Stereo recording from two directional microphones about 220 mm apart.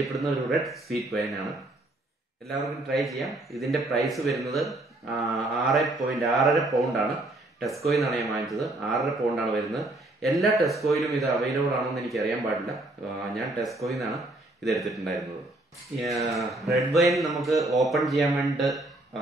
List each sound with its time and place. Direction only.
0.0 s speech: centre (ahead or behind)
16.3 s speech: centre (ahead or behind)
17.6 s speech: 15° right (ahead or behind)
17.8 s speech: centre (ahead or behind)